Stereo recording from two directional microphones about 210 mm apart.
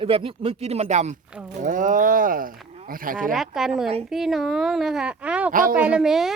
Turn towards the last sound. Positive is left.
turn(degrees=0)  # may be behind; listen again after turning